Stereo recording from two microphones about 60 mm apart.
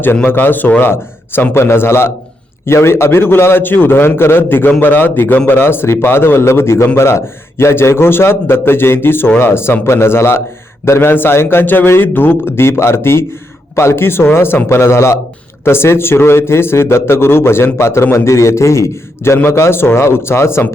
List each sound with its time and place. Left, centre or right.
0.0 s a man's voice: left